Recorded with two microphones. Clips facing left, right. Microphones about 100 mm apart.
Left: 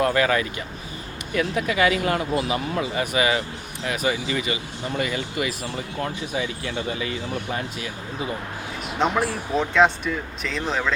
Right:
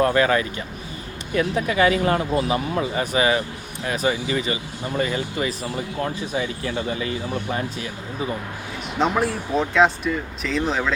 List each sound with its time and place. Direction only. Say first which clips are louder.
0.0 s speech: right 2 dB; 35° right (ahead or behind)
9.0 s speech: right 1 dB; centre (ahead or behind)